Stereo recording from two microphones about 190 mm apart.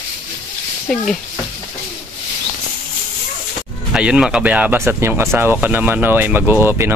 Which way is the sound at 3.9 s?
5° right (ahead or behind).